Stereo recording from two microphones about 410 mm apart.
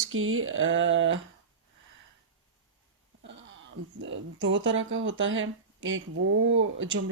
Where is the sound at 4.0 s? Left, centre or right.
Right.